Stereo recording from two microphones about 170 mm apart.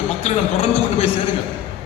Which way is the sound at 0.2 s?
35° left (ahead or behind).